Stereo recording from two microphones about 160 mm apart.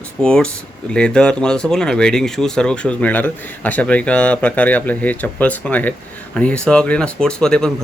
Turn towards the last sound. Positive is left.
turn(degrees=5)  # may be behind; listen again after turning